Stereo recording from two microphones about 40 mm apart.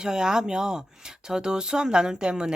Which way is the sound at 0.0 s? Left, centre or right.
Centre.